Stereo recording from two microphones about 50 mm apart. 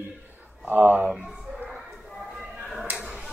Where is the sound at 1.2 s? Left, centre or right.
Centre.